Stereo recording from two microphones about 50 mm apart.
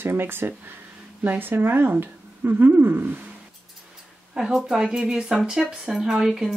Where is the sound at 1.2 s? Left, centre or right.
Right.